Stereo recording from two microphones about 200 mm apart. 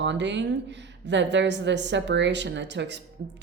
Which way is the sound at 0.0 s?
60° right (ahead or behind).